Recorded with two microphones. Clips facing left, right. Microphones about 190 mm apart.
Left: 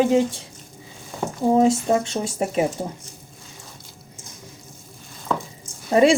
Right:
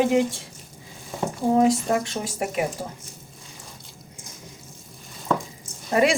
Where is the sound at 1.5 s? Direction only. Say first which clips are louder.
Left 2 dB; 25° left (ahead or behind).